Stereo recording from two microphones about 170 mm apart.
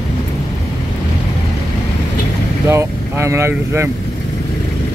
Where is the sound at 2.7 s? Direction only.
15° right (ahead or behind).